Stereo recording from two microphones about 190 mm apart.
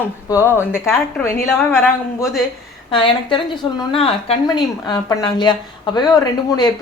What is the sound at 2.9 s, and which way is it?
A woman's voice, 25° left (ahead or behind).